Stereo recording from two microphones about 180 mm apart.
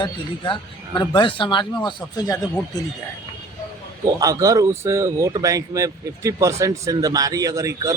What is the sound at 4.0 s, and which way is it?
Speech, 20° right (ahead or behind).